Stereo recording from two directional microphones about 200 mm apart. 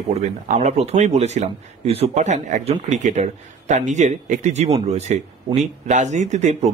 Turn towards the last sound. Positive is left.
turn(degrees=-35)  # may be behind; listen again after turning